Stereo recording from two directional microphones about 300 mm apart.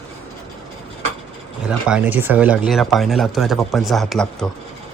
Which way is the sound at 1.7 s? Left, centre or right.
Centre.